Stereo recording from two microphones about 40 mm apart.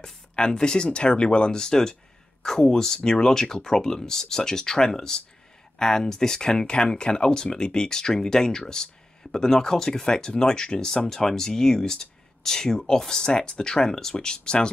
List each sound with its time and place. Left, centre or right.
0.0 s speech: centre